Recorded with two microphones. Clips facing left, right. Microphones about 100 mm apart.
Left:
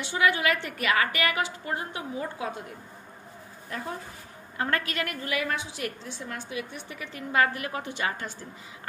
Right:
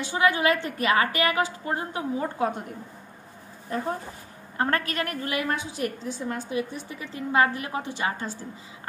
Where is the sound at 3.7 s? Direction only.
35° right (ahead or behind).